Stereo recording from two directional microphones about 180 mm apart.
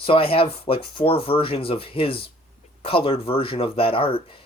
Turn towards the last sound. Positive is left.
turn(degrees=30)  # may be behind; listen again after turning